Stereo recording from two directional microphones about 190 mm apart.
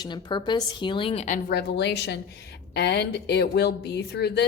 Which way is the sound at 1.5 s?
60° left (ahead or behind).